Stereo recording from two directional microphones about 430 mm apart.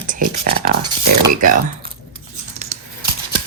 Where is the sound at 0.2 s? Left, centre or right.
Centre.